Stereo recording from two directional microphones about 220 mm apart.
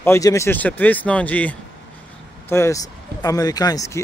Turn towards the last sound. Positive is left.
turn(degrees=15)  # may be behind; listen again after turning